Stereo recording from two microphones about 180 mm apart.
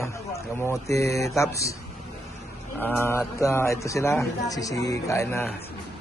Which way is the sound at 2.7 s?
10° left (ahead or behind).